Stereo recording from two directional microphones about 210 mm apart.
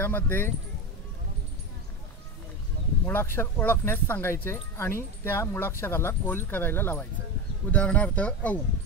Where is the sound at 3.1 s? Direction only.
10° left (ahead or behind).